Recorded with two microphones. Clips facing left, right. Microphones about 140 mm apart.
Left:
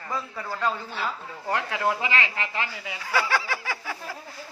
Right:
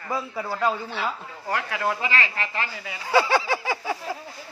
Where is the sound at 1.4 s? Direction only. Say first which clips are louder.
Even; 20° left (ahead or behind).